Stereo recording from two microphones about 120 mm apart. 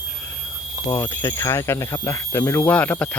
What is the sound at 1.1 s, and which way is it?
Speech, 20° left (ahead or behind).